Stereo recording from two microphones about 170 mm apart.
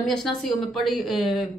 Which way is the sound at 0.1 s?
Centre (ahead or behind).